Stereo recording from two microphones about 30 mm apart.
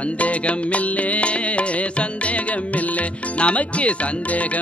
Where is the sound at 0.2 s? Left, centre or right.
Left.